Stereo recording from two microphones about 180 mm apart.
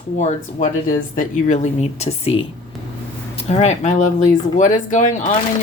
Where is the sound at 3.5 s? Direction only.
40° left (ahead or behind).